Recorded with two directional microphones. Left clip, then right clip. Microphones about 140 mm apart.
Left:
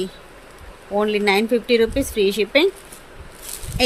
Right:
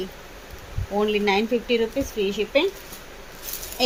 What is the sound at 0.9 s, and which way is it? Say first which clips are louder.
Speech: left 3 dB; 25° left (ahead or behind).